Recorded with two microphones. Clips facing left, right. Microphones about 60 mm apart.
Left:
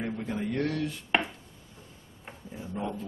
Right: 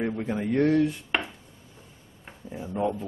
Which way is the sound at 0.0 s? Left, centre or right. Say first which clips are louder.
Right 4 dB; right.